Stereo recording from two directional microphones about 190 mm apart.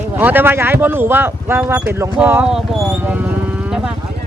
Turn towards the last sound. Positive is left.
turn(degrees=-5)  # may be behind; listen again after turning